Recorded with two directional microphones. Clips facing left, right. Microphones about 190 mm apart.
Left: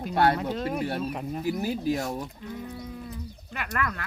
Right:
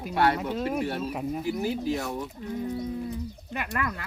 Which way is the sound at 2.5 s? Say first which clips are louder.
Right 9 dB; 25° right (ahead or behind).